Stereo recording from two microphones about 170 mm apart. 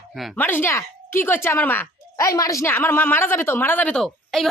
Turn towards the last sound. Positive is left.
turn(degrees=0)  # may be behind; listen again after turning